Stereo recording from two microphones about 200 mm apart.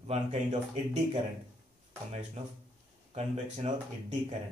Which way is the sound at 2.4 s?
30° right (ahead or behind).